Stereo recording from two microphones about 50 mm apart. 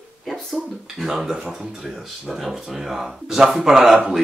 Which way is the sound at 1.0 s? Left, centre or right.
Centre.